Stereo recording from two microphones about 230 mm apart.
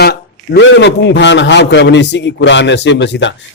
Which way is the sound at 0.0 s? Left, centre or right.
Left.